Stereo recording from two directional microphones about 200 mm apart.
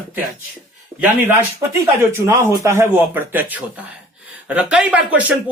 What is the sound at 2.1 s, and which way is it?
Speech, 15° right (ahead or behind).